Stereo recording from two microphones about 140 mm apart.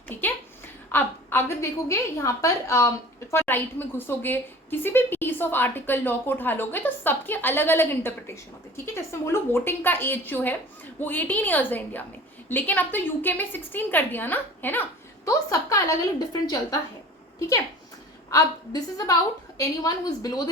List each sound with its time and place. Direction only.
0.1 s a sound: 15° left (ahead or behind)
0.9 s a woman's voice: 15° left (ahead or behind)
18.3 s a woman's voice: 25° left (ahead or behind)